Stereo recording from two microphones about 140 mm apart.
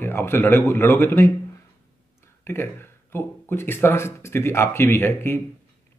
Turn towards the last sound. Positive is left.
turn(degrees=15)  # may be behind; listen again after turning